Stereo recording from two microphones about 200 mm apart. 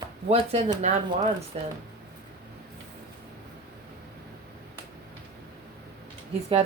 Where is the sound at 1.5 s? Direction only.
30° right (ahead or behind).